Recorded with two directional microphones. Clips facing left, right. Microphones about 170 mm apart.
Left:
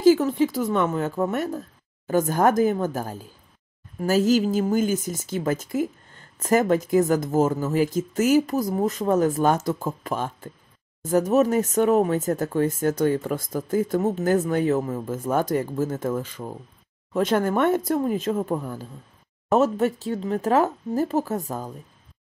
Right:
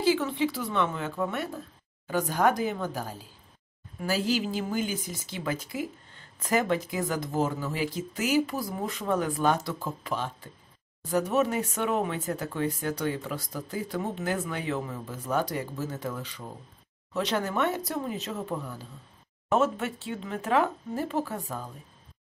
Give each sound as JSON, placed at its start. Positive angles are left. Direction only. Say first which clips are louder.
{"t": 0.0, "sound": "speech", "louder": "left 8 dB", "side_deg": 45}